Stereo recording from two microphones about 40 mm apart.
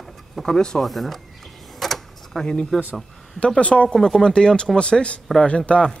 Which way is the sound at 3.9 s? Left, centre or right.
Centre.